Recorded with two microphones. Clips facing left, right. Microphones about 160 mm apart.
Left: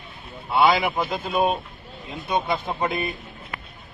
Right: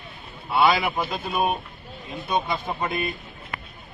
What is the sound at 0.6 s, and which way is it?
Speech, 15° left (ahead or behind).